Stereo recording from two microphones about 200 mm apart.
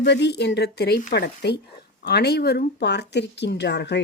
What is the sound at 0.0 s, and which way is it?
A woman's voice, 55° left (ahead or behind).